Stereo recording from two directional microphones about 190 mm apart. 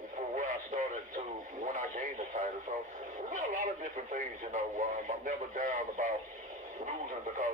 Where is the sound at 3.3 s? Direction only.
40° right (ahead or behind).